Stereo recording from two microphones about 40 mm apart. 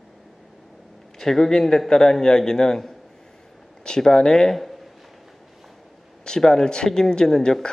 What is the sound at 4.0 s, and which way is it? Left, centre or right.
Speech, centre.